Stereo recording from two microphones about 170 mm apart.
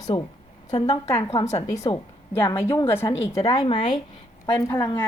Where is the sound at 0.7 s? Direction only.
35° left (ahead or behind).